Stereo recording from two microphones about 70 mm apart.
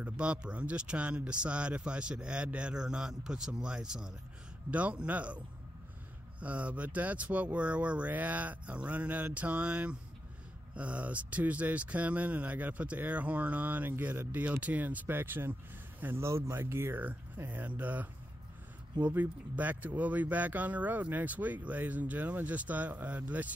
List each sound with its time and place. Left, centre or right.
0.0 s speech: centre
6.4 s speech: centre
14.3 s speech: right